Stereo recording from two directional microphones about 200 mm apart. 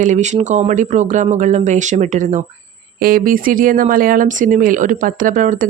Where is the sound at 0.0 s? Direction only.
35° right (ahead or behind).